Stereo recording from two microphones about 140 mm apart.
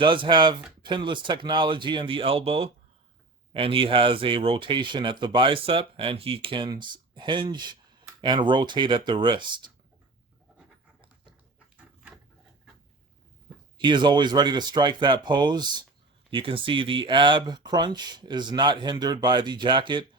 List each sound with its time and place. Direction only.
0.0 s speech: 35° right (ahead or behind)
13.7 s speech: 35° right (ahead or behind)